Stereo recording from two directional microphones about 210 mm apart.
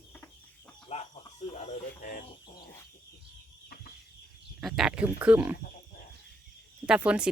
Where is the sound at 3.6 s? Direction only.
45° left (ahead or behind).